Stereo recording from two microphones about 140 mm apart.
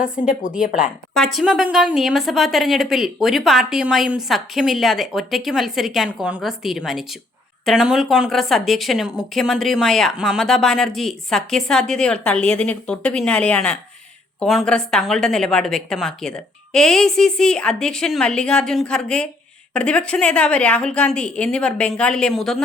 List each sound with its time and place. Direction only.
0.8 s a woman's voice: centre (ahead or behind)